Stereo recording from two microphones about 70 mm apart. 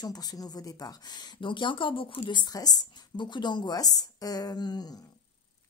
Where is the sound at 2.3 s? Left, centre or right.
Left.